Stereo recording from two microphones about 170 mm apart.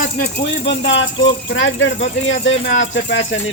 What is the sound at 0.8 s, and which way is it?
Speech, 90° left.